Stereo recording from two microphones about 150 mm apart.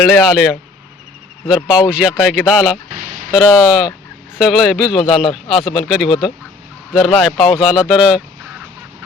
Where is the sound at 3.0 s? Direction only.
70° right (ahead or behind).